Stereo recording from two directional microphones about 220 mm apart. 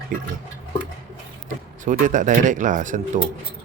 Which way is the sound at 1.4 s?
35° right (ahead or behind).